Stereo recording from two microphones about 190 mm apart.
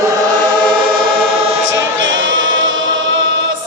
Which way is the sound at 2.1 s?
80° right.